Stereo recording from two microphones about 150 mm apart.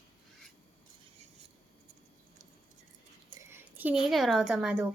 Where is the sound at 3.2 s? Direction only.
15° right (ahead or behind).